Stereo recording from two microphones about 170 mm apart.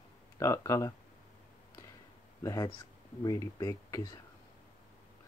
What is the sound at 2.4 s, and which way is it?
Speech, 20° left (ahead or behind).